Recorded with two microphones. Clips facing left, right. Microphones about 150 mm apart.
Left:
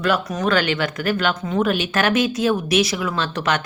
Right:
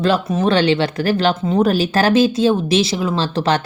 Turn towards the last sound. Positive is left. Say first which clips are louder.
# right 4 dB
turn(degrees=-35)  # may be behind; listen again after turning